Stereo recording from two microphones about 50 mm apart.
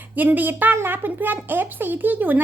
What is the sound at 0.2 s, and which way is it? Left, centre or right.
Speech, right.